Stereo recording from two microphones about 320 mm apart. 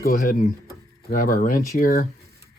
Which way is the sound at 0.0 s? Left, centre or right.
Left.